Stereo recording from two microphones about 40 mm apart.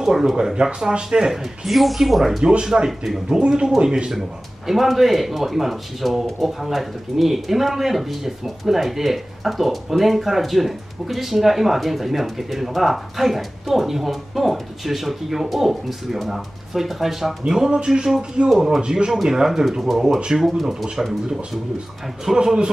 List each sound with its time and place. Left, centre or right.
0.0 s speech: centre
1.3 s speech: centre
2.6 s speech: centre
17.5 s speech: centre
18.5 s speech: centre
18.8 s speech: right
19.2 s speech: centre